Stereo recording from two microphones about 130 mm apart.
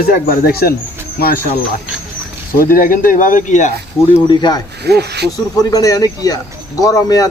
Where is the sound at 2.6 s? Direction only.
90° left; by 3.7 s 70° left (ahead or behind).